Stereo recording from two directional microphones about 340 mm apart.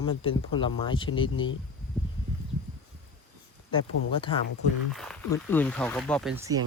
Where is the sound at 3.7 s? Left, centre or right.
Centre.